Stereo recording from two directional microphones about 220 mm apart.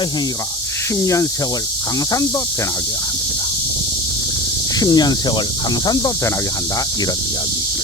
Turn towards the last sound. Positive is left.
turn(degrees=20)  # may be behind; listen again after turning